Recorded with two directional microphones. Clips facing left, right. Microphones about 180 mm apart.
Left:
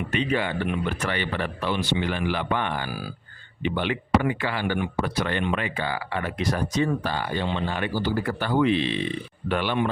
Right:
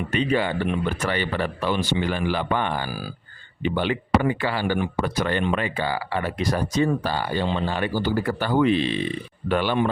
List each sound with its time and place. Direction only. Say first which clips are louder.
0.1 s speech: right 3 dB; 35° right (ahead or behind)